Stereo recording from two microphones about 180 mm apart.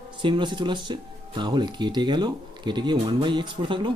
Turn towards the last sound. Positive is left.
turn(degrees=-25)  # may be behind; listen again after turning